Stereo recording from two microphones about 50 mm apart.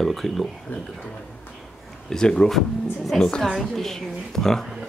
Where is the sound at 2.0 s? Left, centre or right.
Centre.